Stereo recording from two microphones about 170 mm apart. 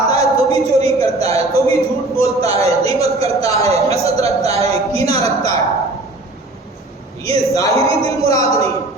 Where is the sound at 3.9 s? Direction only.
35° right (ahead or behind).